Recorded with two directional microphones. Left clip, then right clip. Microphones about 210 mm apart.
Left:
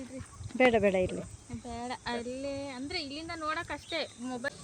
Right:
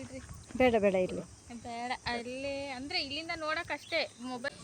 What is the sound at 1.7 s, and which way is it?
Speech, 55° left (ahead or behind).